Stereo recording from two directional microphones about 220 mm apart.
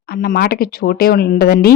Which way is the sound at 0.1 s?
45° left (ahead or behind).